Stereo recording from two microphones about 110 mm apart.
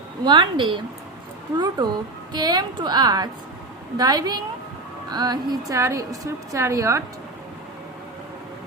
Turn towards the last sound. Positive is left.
turn(degrees=-30)  # may be behind; listen again after turning